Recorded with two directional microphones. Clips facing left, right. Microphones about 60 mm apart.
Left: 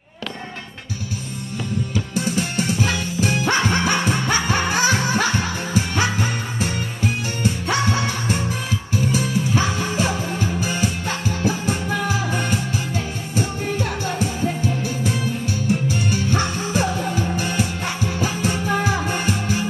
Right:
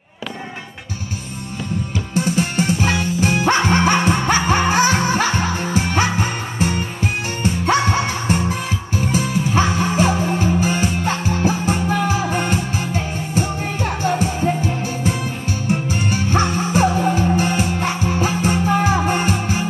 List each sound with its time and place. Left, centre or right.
2.3 s music: right
16.3 s music: right